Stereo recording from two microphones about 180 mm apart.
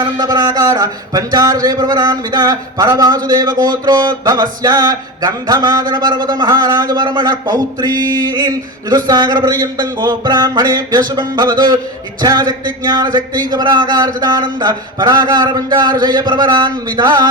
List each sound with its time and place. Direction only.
0.0 s speech: 25° right (ahead or behind)